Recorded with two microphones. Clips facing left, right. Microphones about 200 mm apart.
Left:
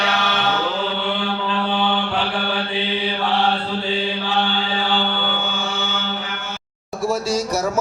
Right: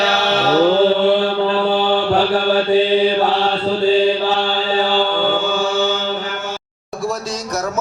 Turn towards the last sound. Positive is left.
turn(degrees=-40)  # may be behind; listen again after turning